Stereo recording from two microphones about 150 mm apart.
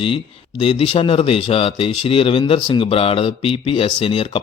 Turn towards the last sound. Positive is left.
turn(degrees=35)  # may be behind; listen again after turning